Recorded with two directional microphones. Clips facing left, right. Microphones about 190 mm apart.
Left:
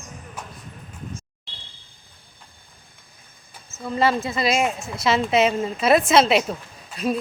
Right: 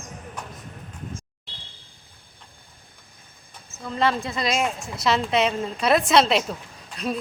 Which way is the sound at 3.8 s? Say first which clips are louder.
Left 2 dB; 5° left (ahead or behind).